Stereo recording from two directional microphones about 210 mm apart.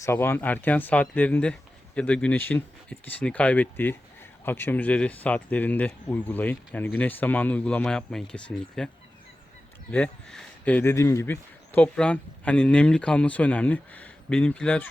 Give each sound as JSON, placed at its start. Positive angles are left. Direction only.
{"t": 0.0, "sound": "speech", "side_deg": 10}
{"t": 9.9, "sound": "speech", "side_deg": 5}